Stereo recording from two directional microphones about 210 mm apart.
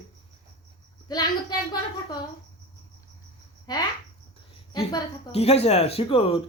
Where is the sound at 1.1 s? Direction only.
20° left (ahead or behind).